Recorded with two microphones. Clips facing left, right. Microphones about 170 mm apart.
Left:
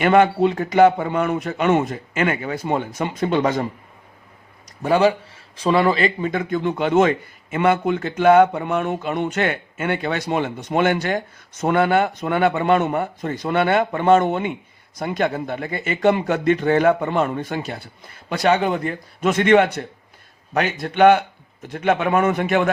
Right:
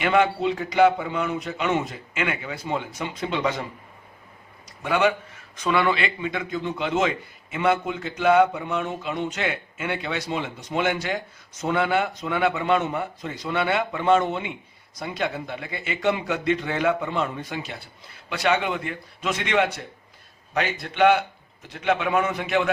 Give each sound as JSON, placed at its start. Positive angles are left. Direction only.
{"t": 0.0, "sound": "a man's voice", "side_deg": 50}
{"t": 4.8, "sound": "a man's voice", "side_deg": 35}